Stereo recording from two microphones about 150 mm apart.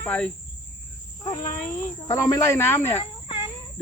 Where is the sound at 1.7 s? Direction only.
20° left (ahead or behind).